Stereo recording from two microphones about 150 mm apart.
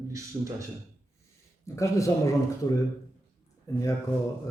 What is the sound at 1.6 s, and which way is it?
Mantra, 20° left (ahead or behind).